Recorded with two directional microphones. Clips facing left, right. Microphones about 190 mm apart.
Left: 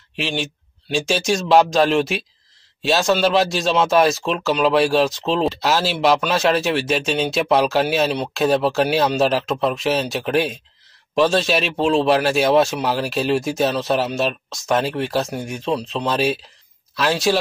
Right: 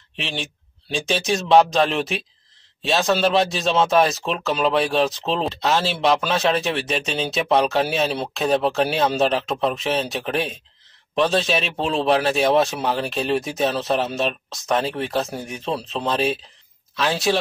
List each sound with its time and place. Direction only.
0.2 s speech: centre (ahead or behind)